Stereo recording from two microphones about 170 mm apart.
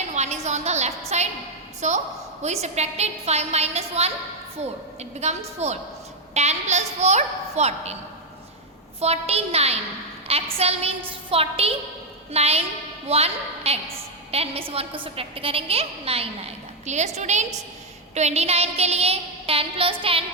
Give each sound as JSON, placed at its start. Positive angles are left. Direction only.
{"t": 0.1, "sound": "a sound", "side_deg": -40}
{"t": 1.8, "sound": "a woman's voice", "side_deg": -45}
{"t": 9.0, "sound": "a woman's voice", "side_deg": -40}